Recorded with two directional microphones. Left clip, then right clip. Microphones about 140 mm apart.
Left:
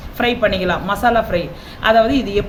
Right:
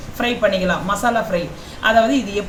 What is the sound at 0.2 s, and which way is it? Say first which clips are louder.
A woman's voice: left 1 dB; 25° left (ahead or behind).